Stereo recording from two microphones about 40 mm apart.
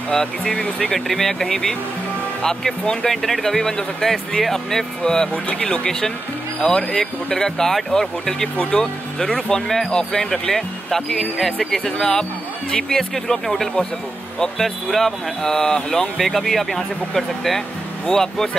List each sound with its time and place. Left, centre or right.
0.1 s speech: centre
0.9 s speech: centre